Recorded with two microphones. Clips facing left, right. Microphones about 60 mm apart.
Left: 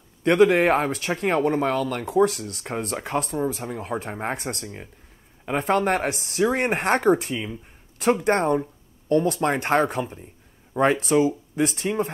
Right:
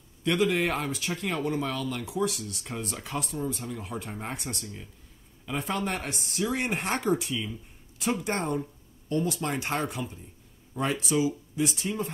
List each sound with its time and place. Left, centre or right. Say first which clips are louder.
0.2 s speech: left 8 dB; left